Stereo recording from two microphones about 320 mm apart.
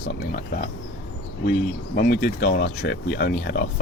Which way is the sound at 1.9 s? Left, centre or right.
Left.